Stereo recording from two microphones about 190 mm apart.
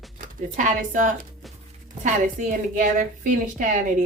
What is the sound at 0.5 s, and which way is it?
A woman's voice, 40° right (ahead or behind).